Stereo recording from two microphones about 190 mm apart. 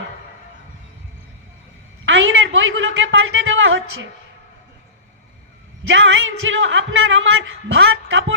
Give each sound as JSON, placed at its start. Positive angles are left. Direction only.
{"t": 2.0, "sound": "a man's voice", "side_deg": -85}
{"t": 5.9, "sound": "speech", "side_deg": -80}